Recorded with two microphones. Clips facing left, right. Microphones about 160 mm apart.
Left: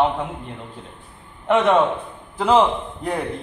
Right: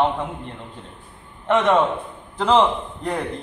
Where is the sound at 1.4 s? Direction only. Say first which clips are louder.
Left 1 dB; 10° left (ahead or behind).